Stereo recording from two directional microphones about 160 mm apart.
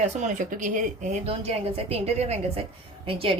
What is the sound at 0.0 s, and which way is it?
A woman's voice, 50° right (ahead or behind).